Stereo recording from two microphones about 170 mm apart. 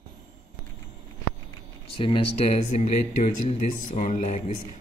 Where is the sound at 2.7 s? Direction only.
40° left (ahead or behind).